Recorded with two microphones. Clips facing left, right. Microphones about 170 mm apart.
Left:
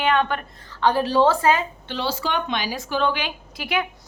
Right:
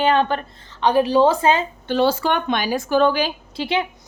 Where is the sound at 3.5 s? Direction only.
25° right (ahead or behind).